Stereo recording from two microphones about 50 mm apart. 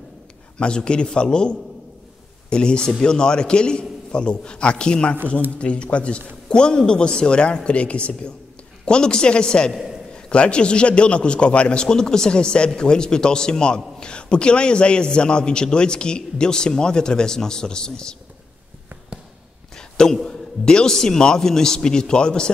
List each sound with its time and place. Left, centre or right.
0.6 s a man's voice: centre
19.7 s a sound: centre
20.2 s a man's voice: centre